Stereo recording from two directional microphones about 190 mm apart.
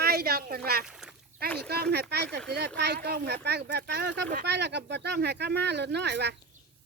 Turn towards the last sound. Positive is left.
turn(degrees=-65)  # may be behind; listen again after turning